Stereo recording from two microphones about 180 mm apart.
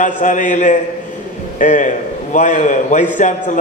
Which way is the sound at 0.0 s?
45° left (ahead or behind).